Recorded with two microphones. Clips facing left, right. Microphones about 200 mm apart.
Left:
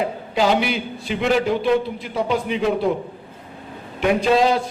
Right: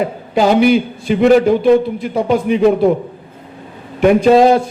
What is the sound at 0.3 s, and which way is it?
A man's voice, 45° right (ahead or behind).